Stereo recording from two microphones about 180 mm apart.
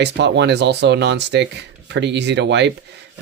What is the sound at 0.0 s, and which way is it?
Speech, 70° right (ahead or behind).